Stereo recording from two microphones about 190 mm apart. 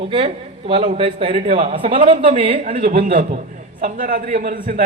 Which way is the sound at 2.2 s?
40° right (ahead or behind).